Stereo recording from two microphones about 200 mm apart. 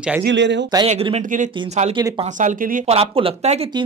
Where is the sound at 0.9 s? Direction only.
35° right (ahead or behind).